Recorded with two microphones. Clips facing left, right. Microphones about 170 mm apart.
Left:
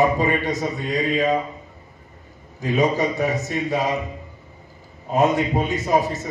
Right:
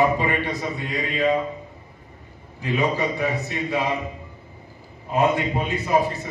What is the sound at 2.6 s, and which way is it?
Speech, 40° left (ahead or behind).